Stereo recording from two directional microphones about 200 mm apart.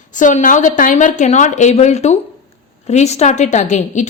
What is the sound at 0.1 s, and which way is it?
A woman's voice, 40° left (ahead or behind).